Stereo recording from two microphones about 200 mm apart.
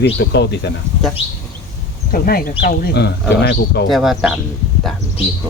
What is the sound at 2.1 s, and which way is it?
Speech, 45° left (ahead or behind).